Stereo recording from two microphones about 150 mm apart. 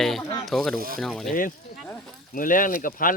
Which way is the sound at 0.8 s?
75° right (ahead or behind).